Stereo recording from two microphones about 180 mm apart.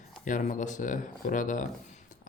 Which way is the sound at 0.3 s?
45° left (ahead or behind).